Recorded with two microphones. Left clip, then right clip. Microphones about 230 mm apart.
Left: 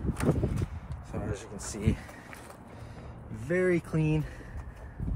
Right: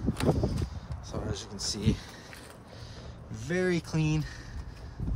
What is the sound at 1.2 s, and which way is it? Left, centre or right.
Speech, centre.